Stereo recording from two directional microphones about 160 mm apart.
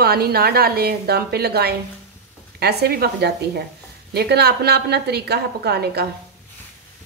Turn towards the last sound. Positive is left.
turn(degrees=-90)